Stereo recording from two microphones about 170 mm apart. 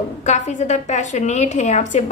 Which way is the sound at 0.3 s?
45° left (ahead or behind).